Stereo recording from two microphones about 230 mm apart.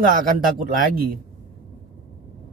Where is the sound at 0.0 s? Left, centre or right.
Right.